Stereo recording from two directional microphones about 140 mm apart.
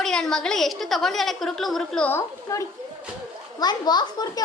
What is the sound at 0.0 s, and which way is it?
A woman's voice, 5° left (ahead or behind).